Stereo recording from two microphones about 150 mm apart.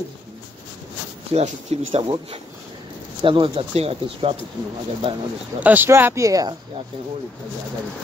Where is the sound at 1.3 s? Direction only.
40° right (ahead or behind).